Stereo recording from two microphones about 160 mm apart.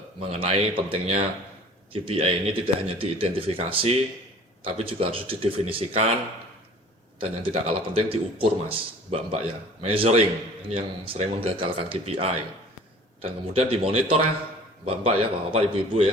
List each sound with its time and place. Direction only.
0.2 s a man's voice: 35° right (ahead or behind)
7.2 s a man's voice: 35° right (ahead or behind)